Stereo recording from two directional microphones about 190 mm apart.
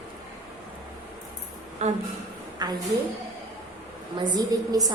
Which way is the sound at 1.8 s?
35° right (ahead or behind).